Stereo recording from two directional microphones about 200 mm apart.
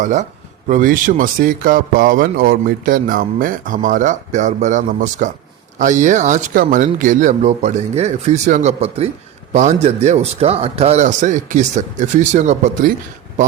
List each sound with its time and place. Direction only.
0.0 s speech: 40° right (ahead or behind)